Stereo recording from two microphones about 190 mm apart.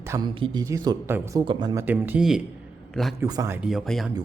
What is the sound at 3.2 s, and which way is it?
Speech, 15° right (ahead or behind).